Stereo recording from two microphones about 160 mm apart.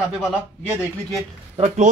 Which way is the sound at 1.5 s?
45° right (ahead or behind).